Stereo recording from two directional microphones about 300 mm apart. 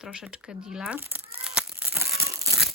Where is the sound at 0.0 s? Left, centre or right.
Centre.